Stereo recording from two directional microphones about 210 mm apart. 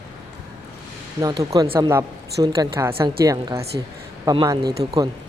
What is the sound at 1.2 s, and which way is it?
Speech, 15° right (ahead or behind).